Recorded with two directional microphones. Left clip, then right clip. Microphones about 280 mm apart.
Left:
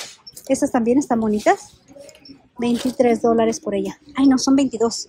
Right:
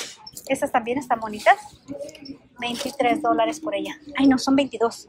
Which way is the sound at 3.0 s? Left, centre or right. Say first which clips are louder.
Left 3 dB; left.